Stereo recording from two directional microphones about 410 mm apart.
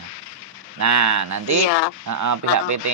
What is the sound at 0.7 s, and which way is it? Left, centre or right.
Speech, right.